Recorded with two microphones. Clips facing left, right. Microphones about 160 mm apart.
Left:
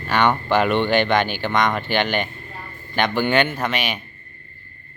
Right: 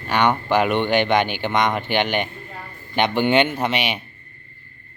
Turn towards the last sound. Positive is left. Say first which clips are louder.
# right 2 dB
turn(degrees=-25)  # may be behind; listen again after turning